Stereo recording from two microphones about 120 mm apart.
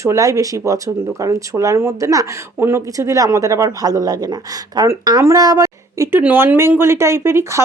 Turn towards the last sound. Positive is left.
turn(degrees=-20)  # may be behind; listen again after turning